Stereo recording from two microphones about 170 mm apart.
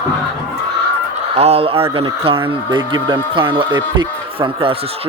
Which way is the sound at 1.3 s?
35° right (ahead or behind).